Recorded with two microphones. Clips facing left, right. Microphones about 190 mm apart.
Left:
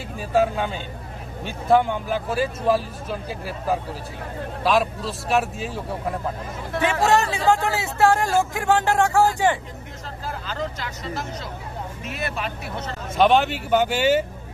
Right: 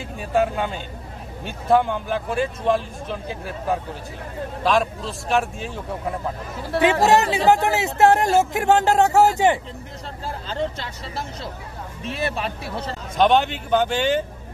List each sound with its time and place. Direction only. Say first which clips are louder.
0.2 s speech: even; centre (ahead or behind)
6.8 s speech: right 3 dB; 20° right (ahead or behind)
10.4 s speech: right 4 dB; 30° right (ahead or behind)
13.1 s speech: even; 5° left (ahead or behind)